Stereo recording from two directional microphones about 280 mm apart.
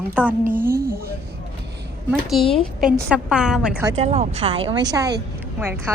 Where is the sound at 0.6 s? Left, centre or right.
Right.